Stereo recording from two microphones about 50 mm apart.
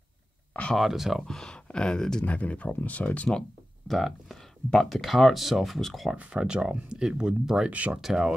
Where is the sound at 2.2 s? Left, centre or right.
Left.